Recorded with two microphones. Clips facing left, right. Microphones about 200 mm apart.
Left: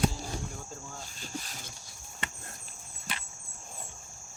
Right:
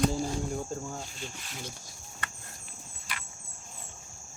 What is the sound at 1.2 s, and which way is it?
Speech, 40° left (ahead or behind).